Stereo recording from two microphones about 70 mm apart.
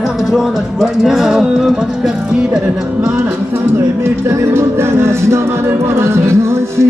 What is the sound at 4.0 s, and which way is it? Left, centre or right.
Music, right.